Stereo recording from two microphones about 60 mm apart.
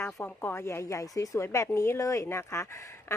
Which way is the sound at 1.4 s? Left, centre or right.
Left.